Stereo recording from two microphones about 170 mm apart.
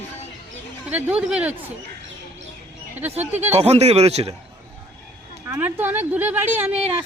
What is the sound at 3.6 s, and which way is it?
Speech, 40° right (ahead or behind).